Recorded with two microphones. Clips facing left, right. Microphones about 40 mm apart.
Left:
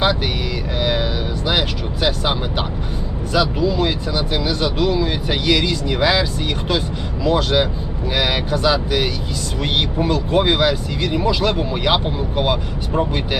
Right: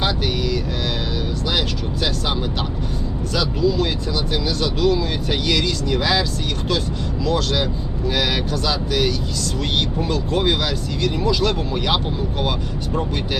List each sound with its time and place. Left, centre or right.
0.0 s speech: centre
7.3 s speech: left